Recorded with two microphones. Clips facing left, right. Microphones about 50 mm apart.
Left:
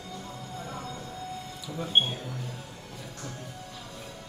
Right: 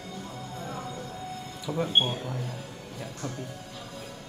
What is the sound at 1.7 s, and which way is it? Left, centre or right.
Speech, right.